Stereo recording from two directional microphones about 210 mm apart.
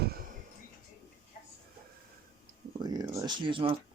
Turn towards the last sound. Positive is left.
turn(degrees=-25)  # may be behind; listen again after turning